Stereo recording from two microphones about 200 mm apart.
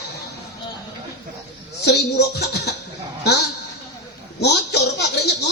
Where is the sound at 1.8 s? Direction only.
55° left (ahead or behind).